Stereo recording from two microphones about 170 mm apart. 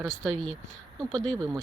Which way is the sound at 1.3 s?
20° right (ahead or behind).